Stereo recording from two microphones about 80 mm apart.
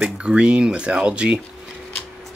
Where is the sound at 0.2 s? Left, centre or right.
Centre.